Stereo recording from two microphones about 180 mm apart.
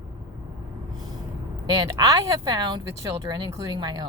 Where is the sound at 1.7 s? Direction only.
20° right (ahead or behind).